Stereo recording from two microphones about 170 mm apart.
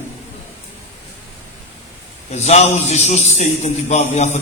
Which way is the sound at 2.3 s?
40° left (ahead or behind).